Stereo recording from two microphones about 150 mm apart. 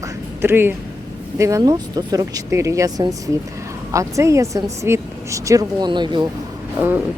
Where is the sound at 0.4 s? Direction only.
15° right (ahead or behind).